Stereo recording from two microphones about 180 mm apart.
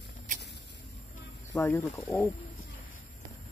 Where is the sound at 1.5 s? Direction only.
10° left (ahead or behind).